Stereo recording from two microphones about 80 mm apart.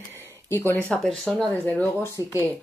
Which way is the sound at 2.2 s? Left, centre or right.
Left.